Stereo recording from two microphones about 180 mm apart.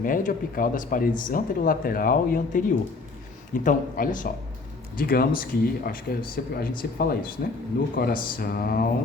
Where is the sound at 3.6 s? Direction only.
50° left (ahead or behind).